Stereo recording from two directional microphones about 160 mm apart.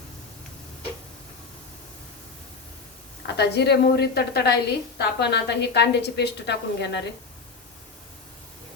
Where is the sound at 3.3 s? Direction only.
90° left.